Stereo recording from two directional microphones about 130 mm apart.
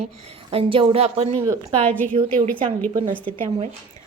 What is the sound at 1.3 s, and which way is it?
Speech, 25° right (ahead or behind).